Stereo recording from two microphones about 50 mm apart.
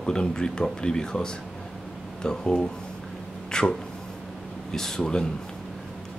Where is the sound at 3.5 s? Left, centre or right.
Centre.